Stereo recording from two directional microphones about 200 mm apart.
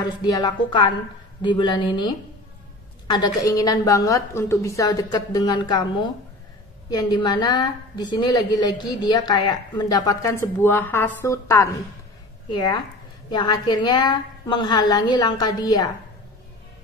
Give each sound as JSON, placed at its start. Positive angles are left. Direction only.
{"t": 0.2, "sound": "a woman's voice", "side_deg": 20}